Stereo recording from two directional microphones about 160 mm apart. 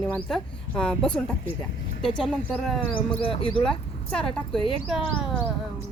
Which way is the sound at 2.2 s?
Centre (ahead or behind).